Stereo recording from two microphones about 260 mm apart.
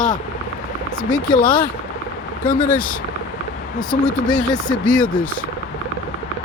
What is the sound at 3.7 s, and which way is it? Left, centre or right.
Speech, centre.